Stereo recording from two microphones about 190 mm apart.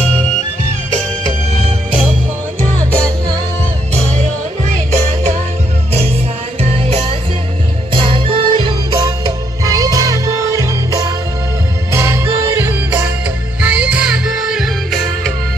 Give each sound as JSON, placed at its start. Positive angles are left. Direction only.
{"t": 2.8, "sound": "music", "side_deg": 5}
{"t": 3.9, "sound": "music", "side_deg": -35}
{"t": 7.9, "sound": "music", "side_deg": -25}